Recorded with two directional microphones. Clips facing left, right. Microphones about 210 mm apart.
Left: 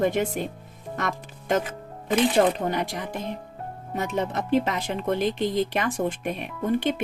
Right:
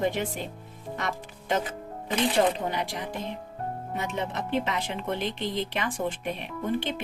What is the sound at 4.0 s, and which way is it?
Speech, 40° left (ahead or behind).